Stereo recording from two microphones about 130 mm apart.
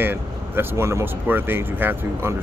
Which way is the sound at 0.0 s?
15° right (ahead or behind).